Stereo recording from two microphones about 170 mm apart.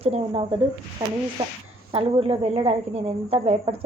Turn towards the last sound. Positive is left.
turn(degrees=-35)  # may be behind; listen again after turning